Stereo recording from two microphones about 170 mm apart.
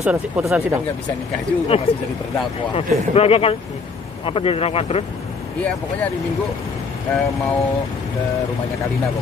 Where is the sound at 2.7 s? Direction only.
35° left (ahead or behind).